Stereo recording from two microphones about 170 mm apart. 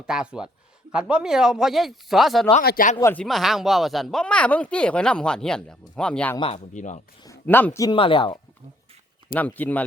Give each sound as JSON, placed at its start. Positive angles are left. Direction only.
{"t": 0.0, "sound": "speech", "side_deg": -5}
{"t": 2.6, "sound": "speech", "side_deg": 55}
{"t": 3.0, "sound": "speech", "side_deg": 10}
{"t": 3.2, "sound": "speech", "side_deg": 0}
{"t": 6.3, "sound": "speech", "side_deg": 30}
{"t": 6.7, "sound": "speech", "side_deg": 45}
{"t": 7.4, "sound": "speech", "side_deg": 10}
{"t": 7.9, "sound": "speech", "side_deg": 30}
{"t": 9.3, "sound": "speech", "side_deg": 10}